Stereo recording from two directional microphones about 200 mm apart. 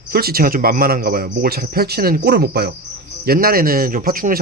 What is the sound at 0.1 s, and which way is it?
Speech, 50° right (ahead or behind).